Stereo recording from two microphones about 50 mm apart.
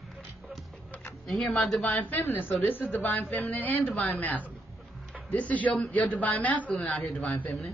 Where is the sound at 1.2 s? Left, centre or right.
Centre.